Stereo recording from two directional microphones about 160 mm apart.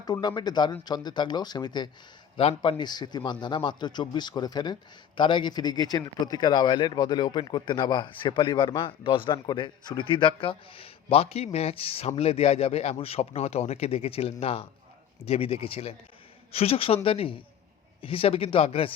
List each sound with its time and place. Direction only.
0.0 s a man's voice: 25° left (ahead or behind)